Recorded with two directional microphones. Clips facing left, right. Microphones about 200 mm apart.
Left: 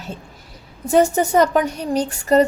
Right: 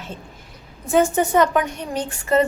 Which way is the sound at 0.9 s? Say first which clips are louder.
Left 2 dB; 40° left (ahead or behind).